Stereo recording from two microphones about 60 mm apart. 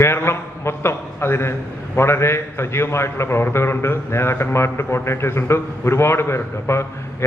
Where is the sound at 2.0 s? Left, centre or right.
Left.